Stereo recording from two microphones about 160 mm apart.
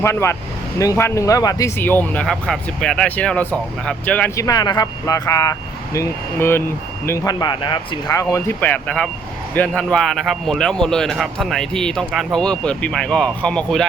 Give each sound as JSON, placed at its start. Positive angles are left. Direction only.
{"t": 0.0, "sound": "speech", "side_deg": 15}
{"t": 4.4, "sound": "a man's voice", "side_deg": 20}